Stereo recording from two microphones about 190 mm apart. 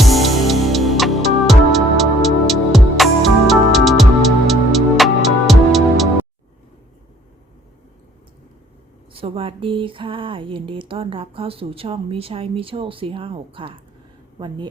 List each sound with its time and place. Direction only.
0.0 s music: centre (ahead or behind)
9.1 s speech: 30° right (ahead or behind)